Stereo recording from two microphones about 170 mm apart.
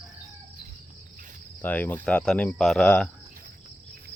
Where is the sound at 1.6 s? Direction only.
10° left (ahead or behind).